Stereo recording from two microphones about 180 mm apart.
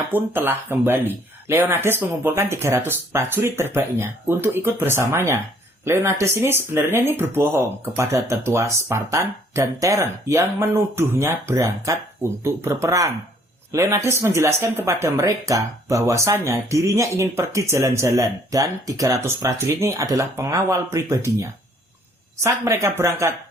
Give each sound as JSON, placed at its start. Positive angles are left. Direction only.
{"t": 0.1, "sound": "speech", "side_deg": -10}